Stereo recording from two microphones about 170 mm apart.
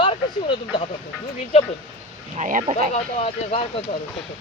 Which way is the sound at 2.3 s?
45° right (ahead or behind).